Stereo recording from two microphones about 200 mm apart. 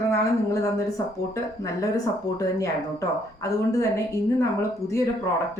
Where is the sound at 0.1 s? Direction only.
15° left (ahead or behind).